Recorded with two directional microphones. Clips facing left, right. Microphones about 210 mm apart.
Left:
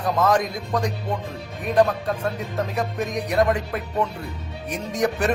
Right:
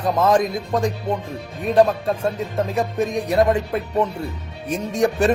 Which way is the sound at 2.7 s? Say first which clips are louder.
Right 6 dB; 25° right (ahead or behind).